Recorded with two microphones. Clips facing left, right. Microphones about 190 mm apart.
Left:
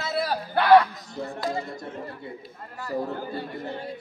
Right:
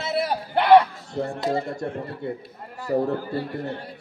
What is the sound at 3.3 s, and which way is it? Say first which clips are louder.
Speech: right 4 dB; 65° right (ahead or behind).